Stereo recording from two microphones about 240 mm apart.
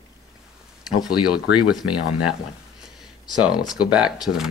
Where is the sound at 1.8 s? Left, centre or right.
Left.